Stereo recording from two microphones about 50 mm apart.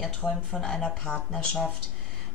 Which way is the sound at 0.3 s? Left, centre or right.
Centre.